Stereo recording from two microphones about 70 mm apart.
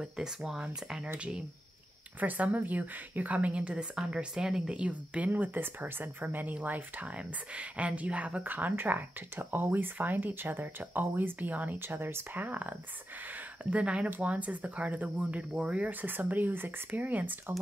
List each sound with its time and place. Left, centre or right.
0.0 s speech: centre; by 17.6 s right